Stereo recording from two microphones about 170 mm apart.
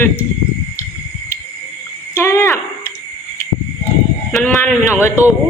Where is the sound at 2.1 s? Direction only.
15° left (ahead or behind).